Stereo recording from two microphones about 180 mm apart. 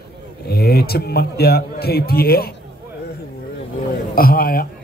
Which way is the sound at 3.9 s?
55° left (ahead or behind).